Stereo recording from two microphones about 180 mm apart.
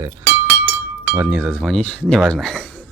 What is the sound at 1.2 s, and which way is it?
Speech, 5° right (ahead or behind).